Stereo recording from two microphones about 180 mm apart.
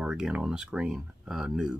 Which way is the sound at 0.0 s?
5° right (ahead or behind).